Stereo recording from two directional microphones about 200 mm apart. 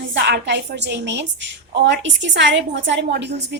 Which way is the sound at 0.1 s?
60° right (ahead or behind).